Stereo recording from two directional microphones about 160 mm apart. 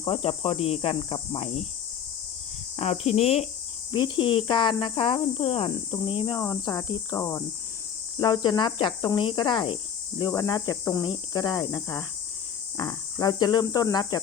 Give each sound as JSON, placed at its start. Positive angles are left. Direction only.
{"t": 0.0, "sound": "speech", "side_deg": 35}
{"t": 2.7, "sound": "speech", "side_deg": 40}
{"t": 3.9, "sound": "speech", "side_deg": 30}